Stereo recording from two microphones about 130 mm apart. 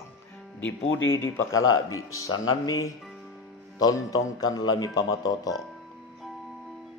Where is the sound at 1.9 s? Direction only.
25° left (ahead or behind).